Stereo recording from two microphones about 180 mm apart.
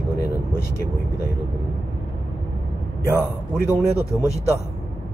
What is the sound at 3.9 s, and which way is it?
Speech, 15° left (ahead or behind).